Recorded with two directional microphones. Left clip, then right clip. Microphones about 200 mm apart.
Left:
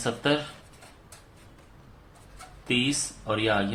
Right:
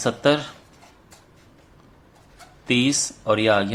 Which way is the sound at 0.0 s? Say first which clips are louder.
Right 6 dB; 35° right (ahead or behind).